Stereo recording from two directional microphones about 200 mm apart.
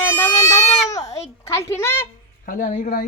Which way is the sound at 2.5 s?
40° left (ahead or behind).